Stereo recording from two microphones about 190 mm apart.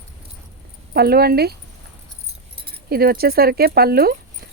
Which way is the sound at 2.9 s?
55° right (ahead or behind).